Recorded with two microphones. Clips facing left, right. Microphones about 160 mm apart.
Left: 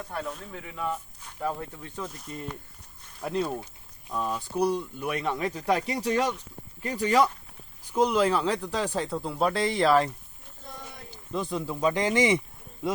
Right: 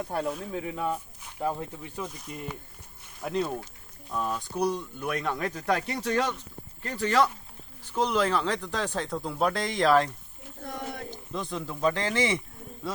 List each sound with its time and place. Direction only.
0.5 s speech: 35° right (ahead or behind)
1.2 s speech: 15° right (ahead or behind)
2.0 s speech: centre (ahead or behind)
10.6 s a sound: 65° right (ahead or behind)
11.3 s speech: 5° left (ahead or behind)